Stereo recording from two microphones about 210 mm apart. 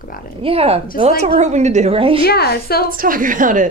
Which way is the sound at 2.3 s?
50° left (ahead or behind).